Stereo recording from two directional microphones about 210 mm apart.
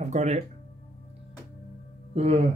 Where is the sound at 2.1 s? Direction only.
30° right (ahead or behind).